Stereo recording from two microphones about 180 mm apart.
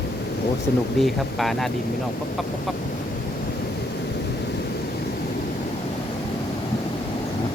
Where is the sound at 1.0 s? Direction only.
Centre (ahead or behind).